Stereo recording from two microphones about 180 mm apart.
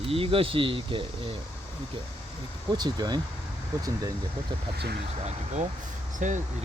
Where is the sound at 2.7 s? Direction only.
25° right (ahead or behind).